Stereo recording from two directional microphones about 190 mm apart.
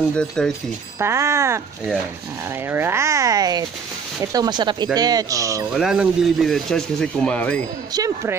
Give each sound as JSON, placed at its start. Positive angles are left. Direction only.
{"t": 0.1, "sound": "speech", "side_deg": 5}
{"t": 0.9, "sound": "a child's voice", "side_deg": -15}
{"t": 2.7, "sound": "a child's voice", "side_deg": -10}
{"t": 5.8, "sound": "speech", "side_deg": 0}
{"t": 7.9, "sound": "speech", "side_deg": -20}